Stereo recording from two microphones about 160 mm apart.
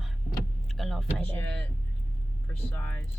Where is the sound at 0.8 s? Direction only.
Centre (ahead or behind).